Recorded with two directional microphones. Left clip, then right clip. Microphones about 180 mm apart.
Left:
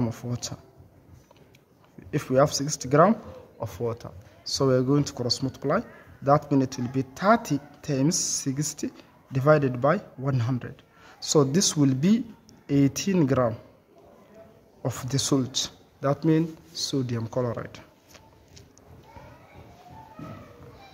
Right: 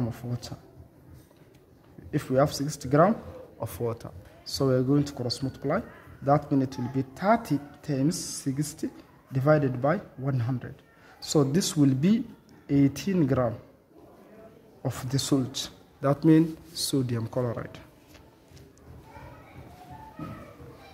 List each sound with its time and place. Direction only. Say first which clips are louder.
0.0 s speech: left 4 dB; 20° left (ahead or behind)
2.0 s speech: left 3 dB; 20° left (ahead or behind)
14.8 s speech: left 3 dB; 20° left (ahead or behind)
16.0 s speech: right 2 dB; 5° left (ahead or behind)